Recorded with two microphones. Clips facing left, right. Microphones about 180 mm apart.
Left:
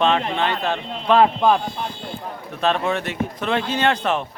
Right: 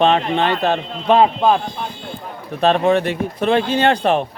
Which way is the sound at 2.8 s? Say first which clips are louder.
Right 7 dB; 35° right (ahead or behind).